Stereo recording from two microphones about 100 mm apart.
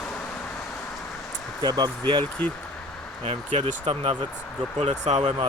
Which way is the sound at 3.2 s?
90° right.